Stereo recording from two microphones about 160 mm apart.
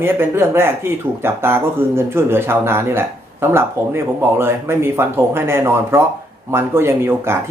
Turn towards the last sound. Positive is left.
turn(degrees=-15)  # may be behind; listen again after turning